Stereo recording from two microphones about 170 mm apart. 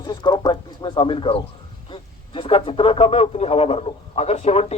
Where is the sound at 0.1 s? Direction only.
25° left (ahead or behind).